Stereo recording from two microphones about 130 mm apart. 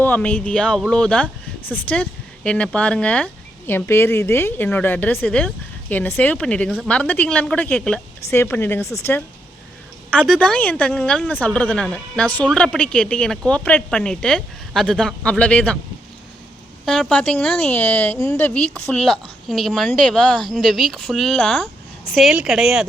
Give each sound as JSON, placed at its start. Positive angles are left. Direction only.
{"t": 0.0, "sound": "speech", "side_deg": 10}
{"t": 10.1, "sound": "speech", "side_deg": 10}
{"t": 16.8, "sound": "speech", "side_deg": 5}